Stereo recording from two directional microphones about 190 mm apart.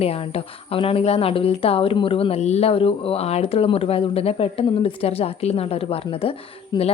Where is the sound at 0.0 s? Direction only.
30° left (ahead or behind).